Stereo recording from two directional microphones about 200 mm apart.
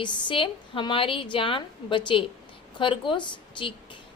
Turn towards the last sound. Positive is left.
turn(degrees=25)  # may be behind; listen again after turning